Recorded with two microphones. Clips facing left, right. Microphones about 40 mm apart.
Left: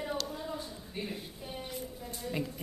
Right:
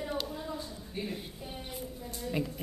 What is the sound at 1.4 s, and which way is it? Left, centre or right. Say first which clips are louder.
Music: left 1 dB; centre.